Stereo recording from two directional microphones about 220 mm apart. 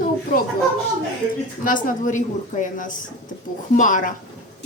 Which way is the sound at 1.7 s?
35° left (ahead or behind).